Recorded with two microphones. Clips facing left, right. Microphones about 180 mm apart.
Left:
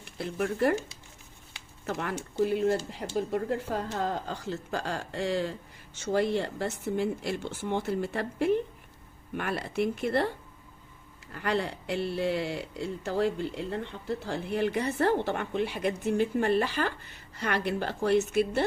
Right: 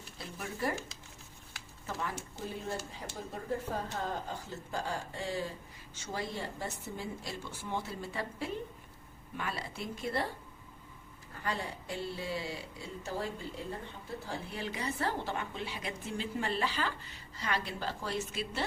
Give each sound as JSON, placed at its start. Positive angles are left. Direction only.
{"t": 0.0, "sound": "speech", "side_deg": 65}
{"t": 1.9, "sound": "speech", "side_deg": 70}
{"t": 3.2, "sound": "a woman's voice", "side_deg": 85}
{"t": 11.3, "sound": "speech", "side_deg": 75}
{"t": 14.3, "sound": "a woman's voice", "side_deg": 65}